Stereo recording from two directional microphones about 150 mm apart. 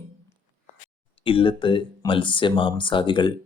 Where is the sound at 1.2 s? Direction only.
35° left (ahead or behind).